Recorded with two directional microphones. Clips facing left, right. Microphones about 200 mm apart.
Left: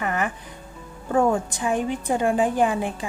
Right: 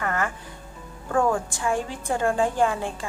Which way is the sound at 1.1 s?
20° left (ahead or behind).